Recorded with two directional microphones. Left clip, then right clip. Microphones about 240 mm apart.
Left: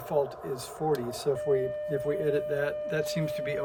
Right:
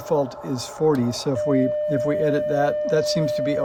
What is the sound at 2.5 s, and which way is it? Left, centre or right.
Speech, right.